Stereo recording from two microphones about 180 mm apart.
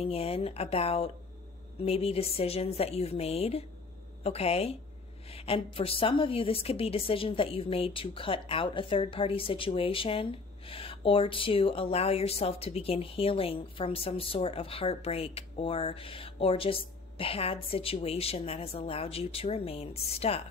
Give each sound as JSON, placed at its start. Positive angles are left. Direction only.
{"t": 0.0, "sound": "a woman's voice", "side_deg": 35}